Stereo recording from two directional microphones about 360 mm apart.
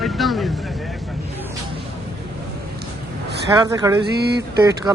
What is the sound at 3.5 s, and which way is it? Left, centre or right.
Speech, centre.